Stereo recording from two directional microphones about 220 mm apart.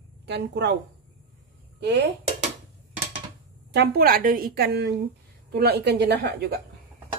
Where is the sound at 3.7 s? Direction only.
45° right (ahead or behind).